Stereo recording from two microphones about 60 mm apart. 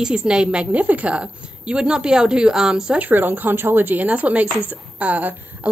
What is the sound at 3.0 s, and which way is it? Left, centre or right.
Speech, right.